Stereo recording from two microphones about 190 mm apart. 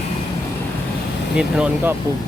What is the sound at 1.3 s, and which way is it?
Speech, 5° right (ahead or behind).